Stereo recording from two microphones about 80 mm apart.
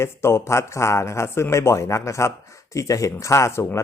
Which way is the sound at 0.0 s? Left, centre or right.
Left.